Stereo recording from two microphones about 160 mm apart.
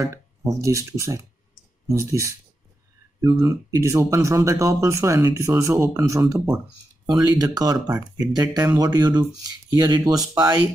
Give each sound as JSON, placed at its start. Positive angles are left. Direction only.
{"t": 0.0, "sound": "speech", "side_deg": -20}